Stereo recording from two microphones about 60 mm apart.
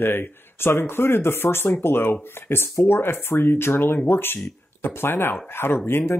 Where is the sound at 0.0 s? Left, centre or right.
Left.